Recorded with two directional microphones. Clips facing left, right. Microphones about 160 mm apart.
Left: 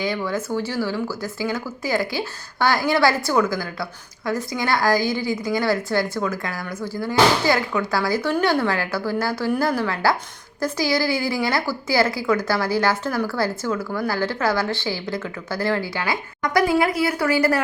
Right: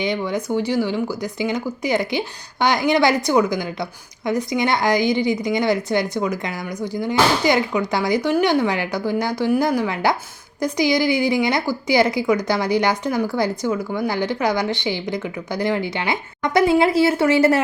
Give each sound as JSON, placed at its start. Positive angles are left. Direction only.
{"t": 0.0, "sound": "a woman's voice", "side_deg": -20}